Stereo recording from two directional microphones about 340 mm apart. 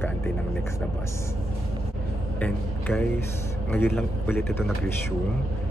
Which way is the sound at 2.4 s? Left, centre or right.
Centre.